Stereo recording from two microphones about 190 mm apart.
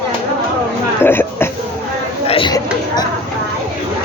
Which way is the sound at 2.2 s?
30° left (ahead or behind).